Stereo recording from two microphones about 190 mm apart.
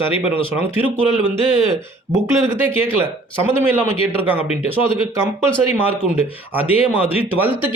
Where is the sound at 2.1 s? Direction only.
15° right (ahead or behind).